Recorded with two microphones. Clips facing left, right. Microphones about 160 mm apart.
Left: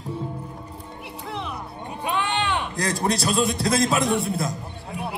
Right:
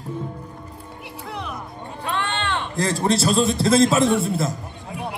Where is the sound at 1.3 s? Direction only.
Centre (ahead or behind).